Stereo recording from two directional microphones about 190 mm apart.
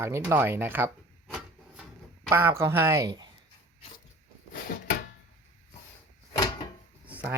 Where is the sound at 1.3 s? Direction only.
5° right (ahead or behind).